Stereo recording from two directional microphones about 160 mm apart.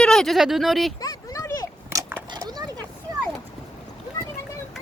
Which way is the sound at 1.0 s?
25° left (ahead or behind).